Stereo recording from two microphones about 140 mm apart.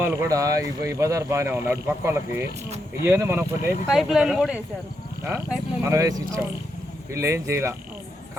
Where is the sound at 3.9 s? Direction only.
Centre (ahead or behind).